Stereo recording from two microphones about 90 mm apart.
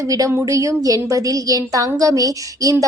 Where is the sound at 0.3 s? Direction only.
35° right (ahead or behind).